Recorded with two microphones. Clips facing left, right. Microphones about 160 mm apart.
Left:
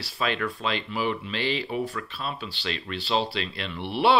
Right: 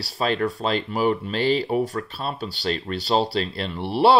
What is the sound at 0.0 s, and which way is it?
Speech, 40° right (ahead or behind).